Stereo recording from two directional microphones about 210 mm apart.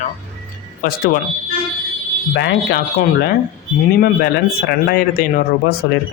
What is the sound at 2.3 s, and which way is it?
A man's voice, 50° left (ahead or behind).